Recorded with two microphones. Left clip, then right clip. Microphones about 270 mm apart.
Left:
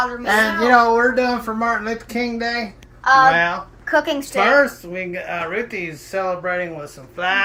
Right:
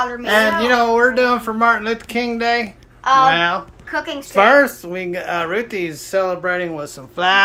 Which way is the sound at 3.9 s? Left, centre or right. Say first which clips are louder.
Left 6 dB; left.